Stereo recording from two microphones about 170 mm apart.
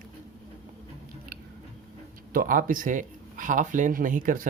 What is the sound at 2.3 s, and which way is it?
Speech, 55° right (ahead or behind).